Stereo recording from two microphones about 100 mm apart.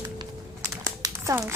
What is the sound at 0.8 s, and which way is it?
Crumpling, 30° right (ahead or behind).